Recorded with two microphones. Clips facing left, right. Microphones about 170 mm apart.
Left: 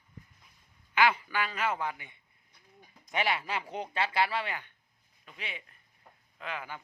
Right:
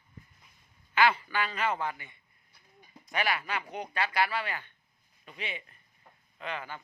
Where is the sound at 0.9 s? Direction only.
10° left (ahead or behind).